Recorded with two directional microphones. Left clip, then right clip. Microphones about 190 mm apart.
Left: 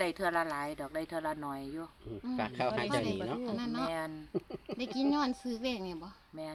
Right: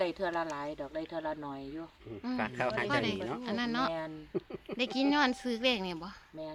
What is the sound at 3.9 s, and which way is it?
Speech, 20° left (ahead or behind).